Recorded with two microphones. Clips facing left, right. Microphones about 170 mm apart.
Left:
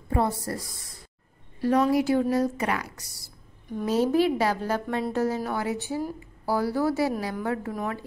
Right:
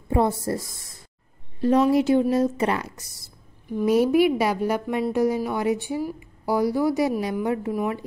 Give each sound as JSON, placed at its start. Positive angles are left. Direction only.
{"t": 0.1, "sound": "a woman's voice", "side_deg": -20}
{"t": 1.6, "sound": "a woman's voice", "side_deg": -20}
{"t": 3.6, "sound": "a woman's voice", "side_deg": -15}